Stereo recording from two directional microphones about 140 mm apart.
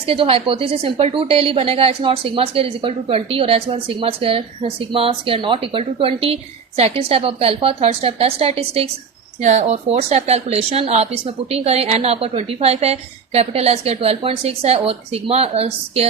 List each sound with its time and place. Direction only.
0.0 s a woman's voice: 45° right (ahead or behind)
9.4 s a woman's voice: 55° right (ahead or behind)